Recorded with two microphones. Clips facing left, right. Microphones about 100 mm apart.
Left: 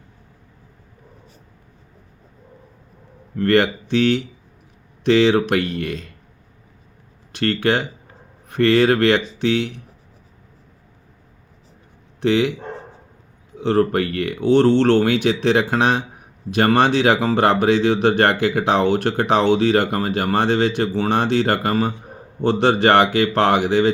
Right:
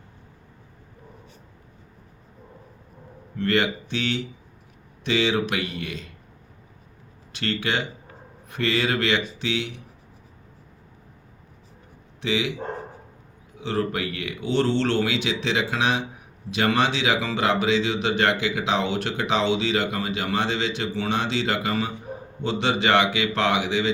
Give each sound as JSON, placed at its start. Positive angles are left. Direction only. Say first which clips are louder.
{"t": 3.3, "sound": "speech", "louder": "left 6 dB", "side_deg": 55}
{"t": 7.3, "sound": "speech", "louder": "left 7 dB", "side_deg": 50}
{"t": 12.2, "sound": "speech", "louder": "left 8 dB", "side_deg": 55}
{"t": 13.6, "sound": "speech", "louder": "left 8 dB", "side_deg": 50}